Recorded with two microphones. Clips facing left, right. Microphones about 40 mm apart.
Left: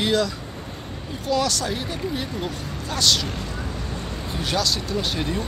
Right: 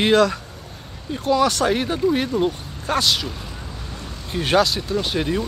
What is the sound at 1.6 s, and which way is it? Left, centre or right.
Speech, right.